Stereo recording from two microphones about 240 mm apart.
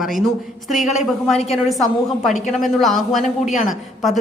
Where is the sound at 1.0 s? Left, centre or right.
Centre.